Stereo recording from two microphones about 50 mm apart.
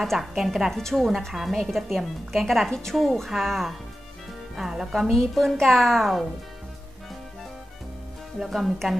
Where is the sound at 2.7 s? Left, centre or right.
Centre.